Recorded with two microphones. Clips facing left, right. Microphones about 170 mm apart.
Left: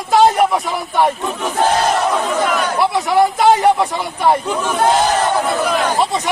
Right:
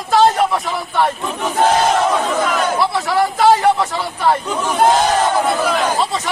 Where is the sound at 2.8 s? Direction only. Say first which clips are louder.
Left 7 dB; 15° left (ahead or behind).